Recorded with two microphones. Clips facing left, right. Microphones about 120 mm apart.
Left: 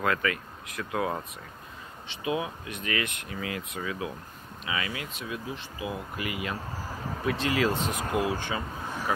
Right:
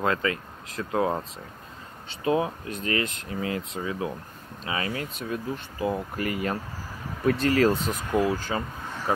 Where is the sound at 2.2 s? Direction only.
40° right (ahead or behind).